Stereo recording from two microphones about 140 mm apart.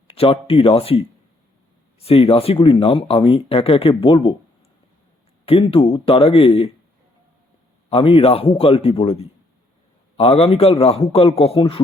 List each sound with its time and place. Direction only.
0.1 s a man's voice: 40° left (ahead or behind)
5.5 s speech: 40° left (ahead or behind)
7.9 s a man's voice: 40° left (ahead or behind)